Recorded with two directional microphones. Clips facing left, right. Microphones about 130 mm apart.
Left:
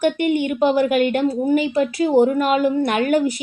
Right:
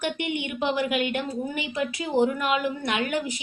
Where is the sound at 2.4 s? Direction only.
40° left (ahead or behind).